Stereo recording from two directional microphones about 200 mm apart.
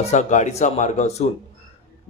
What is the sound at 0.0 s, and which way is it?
A man's voice, 35° left (ahead or behind).